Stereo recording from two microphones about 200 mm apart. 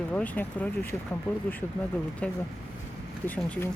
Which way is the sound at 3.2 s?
10° left (ahead or behind).